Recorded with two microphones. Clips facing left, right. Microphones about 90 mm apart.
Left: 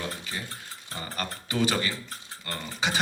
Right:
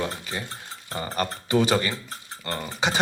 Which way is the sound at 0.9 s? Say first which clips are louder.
Right 7 dB; 25° right (ahead or behind).